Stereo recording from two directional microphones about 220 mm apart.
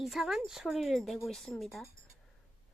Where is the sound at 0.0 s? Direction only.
Centre (ahead or behind).